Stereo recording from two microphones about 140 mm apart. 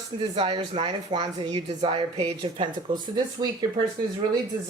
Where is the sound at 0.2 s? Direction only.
40° right (ahead or behind).